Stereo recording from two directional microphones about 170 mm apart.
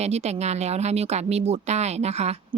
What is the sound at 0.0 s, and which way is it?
Speech, 40° right (ahead or behind).